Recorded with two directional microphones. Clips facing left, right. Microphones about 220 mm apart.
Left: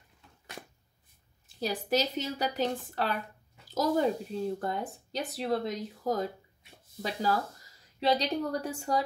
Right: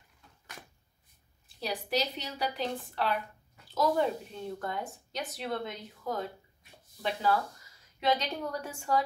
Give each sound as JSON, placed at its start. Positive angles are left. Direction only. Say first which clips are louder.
{"t": 1.6, "sound": "a woman's voice", "louder": "left 3 dB", "side_deg": 45}